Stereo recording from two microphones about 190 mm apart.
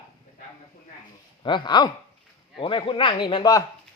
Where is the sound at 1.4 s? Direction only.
25° left (ahead or behind).